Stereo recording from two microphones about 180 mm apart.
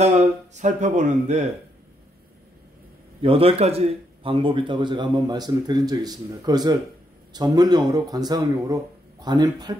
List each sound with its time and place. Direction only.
0.6 s speech: 40° right (ahead or behind)
3.2 s a man's voice: 30° right (ahead or behind)